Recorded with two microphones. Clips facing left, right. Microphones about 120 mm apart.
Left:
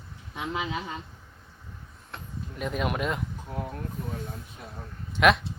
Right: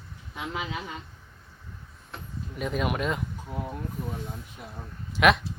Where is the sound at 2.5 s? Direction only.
Centre (ahead or behind).